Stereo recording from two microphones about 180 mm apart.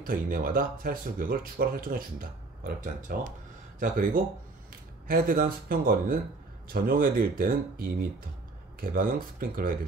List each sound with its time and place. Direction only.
0.0 s speech: 50° right (ahead or behind)